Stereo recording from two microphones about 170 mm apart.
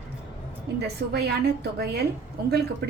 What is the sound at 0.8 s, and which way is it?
A woman's voice, 70° right (ahead or behind).